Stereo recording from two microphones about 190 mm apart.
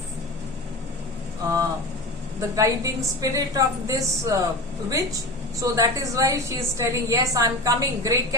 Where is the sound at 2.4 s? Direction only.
15° right (ahead or behind).